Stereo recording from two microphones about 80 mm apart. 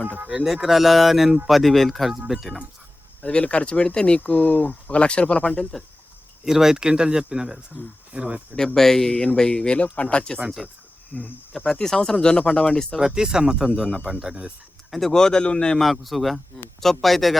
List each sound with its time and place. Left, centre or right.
0.3 s a man's voice: centre
3.2 s speech: centre
6.4 s speech: centre
8.5 s speech: centre
10.3 s a man's voice: centre
13.0 s speech: centre
14.9 s a man's voice: centre